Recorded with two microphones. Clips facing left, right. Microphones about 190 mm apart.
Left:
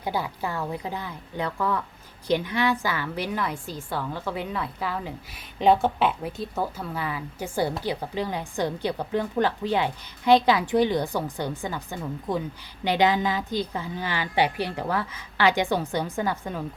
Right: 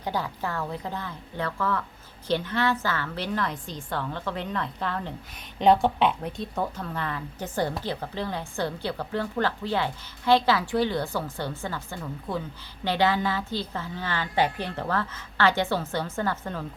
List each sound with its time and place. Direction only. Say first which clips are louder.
0.0 s a woman's voice: left 1 dB; 10° left (ahead or behind)